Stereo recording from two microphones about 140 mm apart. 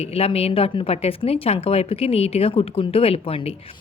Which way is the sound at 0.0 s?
45° left (ahead or behind).